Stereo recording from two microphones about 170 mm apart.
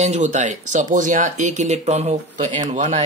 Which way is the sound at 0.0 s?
40° right (ahead or behind).